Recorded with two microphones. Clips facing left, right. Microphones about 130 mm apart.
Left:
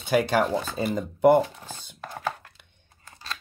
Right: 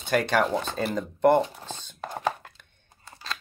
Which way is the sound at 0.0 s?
5° left (ahead or behind).